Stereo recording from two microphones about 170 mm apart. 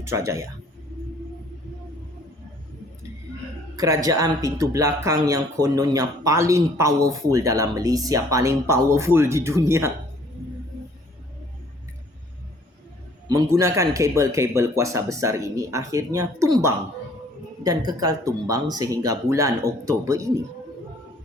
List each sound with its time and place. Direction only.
0.0 s speech: 15° right (ahead or behind)
3.8 s speech: 20° right (ahead or behind)
13.2 s speech: 20° right (ahead or behind)